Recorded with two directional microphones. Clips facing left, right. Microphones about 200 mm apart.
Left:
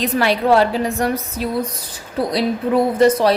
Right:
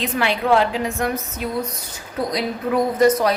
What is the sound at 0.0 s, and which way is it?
A woman's voice, 40° left (ahead or behind).